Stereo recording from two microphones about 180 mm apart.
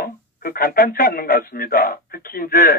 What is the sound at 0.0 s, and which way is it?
Speech, 55° left (ahead or behind).